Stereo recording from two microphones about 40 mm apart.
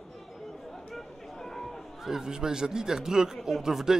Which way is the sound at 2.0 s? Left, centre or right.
Centre.